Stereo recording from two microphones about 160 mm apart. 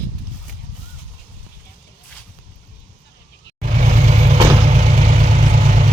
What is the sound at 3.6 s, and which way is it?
Vehicle, 50° right (ahead or behind).